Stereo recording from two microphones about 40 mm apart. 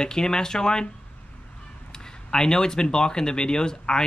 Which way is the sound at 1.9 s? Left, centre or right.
Centre.